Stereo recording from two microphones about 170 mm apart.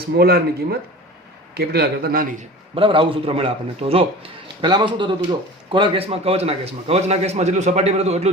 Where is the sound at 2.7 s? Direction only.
30° right (ahead or behind).